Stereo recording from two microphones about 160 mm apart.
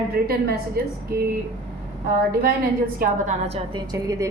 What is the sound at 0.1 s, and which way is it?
Speech, 75° right (ahead or behind).